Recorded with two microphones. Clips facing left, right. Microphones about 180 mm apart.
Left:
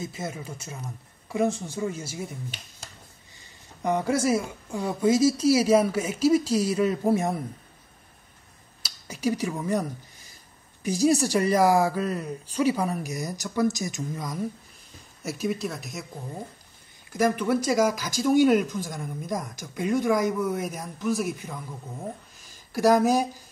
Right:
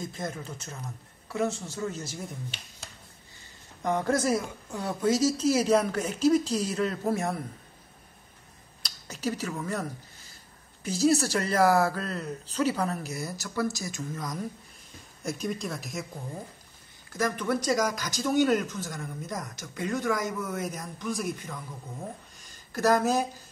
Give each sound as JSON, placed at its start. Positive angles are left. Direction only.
{"t": 0.0, "sound": "speech", "side_deg": 5}
{"t": 3.8, "sound": "speech", "side_deg": 10}
{"t": 8.8, "sound": "speech", "side_deg": 10}
{"t": 17.1, "sound": "speech", "side_deg": 10}
{"t": 22.4, "sound": "a sound", "side_deg": 10}